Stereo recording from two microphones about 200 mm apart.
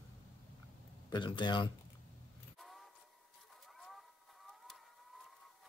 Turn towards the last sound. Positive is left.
turn(degrees=0)  # may be behind; listen again after turning